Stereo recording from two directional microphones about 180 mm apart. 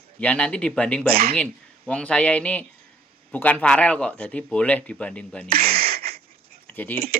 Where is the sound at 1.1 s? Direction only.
55° right (ahead or behind).